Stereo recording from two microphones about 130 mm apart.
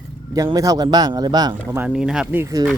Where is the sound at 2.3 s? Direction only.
25° right (ahead or behind).